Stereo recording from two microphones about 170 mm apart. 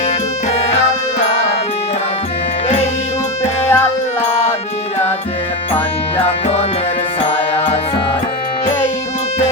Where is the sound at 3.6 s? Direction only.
15° left (ahead or behind).